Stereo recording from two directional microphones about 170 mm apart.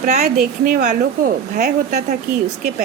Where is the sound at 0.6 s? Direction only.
45° right (ahead or behind).